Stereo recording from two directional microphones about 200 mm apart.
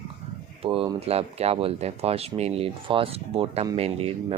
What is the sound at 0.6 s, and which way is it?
Speech, 30° right (ahead or behind).